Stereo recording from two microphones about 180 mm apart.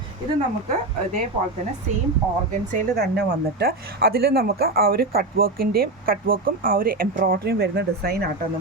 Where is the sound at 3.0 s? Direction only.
65° right (ahead or behind).